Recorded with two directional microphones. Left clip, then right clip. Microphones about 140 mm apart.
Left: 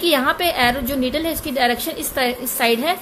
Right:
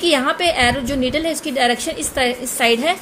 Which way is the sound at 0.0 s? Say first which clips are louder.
Right 1 dB; 15° right (ahead or behind).